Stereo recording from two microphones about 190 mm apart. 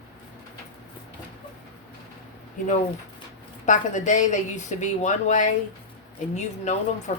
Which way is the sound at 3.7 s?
40° left (ahead or behind).